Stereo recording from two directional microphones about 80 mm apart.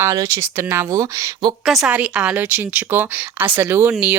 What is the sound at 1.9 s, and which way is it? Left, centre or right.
Speech, centre.